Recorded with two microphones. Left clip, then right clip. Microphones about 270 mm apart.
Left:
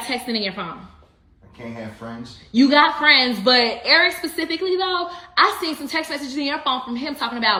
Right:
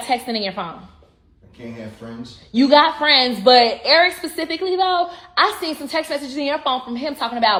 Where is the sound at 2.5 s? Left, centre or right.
Centre.